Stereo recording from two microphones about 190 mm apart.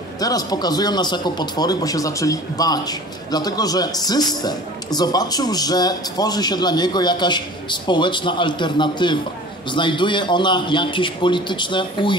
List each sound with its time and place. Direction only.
0.2 s a man's voice: 20° left (ahead or behind)